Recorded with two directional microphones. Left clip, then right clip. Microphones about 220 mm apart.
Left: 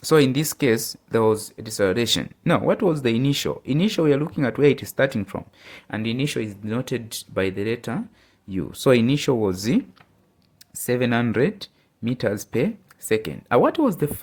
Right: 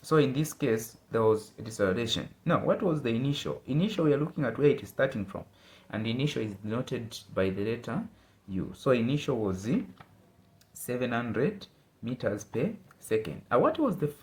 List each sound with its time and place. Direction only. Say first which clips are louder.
0.0 s speech: left 8 dB; 50° left (ahead or behind)
10.8 s speech: left 9 dB; 50° left (ahead or behind)